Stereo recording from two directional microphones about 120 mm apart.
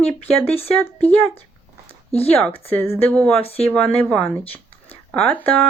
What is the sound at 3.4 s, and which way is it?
Speech, 55° left (ahead or behind).